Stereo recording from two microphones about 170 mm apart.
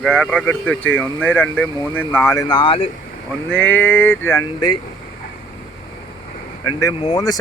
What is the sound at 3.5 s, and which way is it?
Speech, 10° left (ahead or behind).